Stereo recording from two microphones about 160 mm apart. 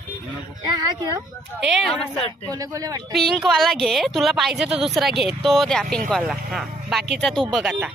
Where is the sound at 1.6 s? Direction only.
Centre (ahead or behind).